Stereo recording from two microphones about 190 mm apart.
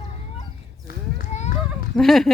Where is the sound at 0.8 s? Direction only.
40° left (ahead or behind).